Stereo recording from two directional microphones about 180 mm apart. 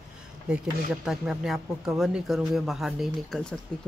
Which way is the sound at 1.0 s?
5° right (ahead or behind).